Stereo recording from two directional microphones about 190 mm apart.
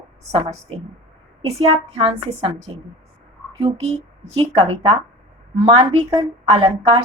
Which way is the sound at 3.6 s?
30° right (ahead or behind).